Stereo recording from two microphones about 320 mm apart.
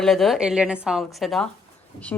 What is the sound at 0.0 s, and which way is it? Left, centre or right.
A woman's voice, centre.